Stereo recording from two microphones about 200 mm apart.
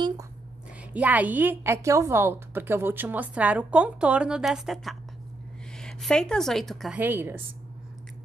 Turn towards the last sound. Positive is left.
turn(degrees=-10)  # may be behind; listen again after turning